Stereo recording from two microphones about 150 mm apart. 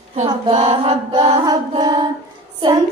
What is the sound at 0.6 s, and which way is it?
Chant, 35° right (ahead or behind).